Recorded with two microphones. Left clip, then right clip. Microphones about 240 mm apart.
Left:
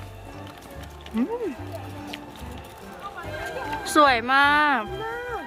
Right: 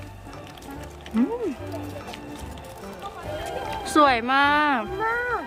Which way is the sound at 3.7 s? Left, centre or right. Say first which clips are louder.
Even; centre.